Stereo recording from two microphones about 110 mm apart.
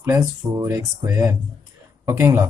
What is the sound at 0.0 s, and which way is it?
Speech, 25° right (ahead or behind).